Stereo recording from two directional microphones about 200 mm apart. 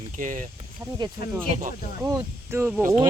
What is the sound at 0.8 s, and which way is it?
Speech, 10° right (ahead or behind).